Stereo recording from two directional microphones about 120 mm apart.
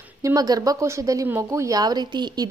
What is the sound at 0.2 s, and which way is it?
Speech, 30° right (ahead or behind).